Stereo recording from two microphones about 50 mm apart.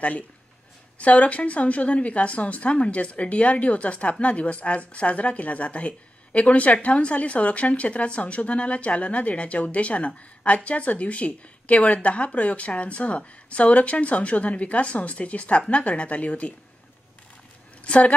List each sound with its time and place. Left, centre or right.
0.9 s a woman's voice: left
17.8 s a woman's voice: left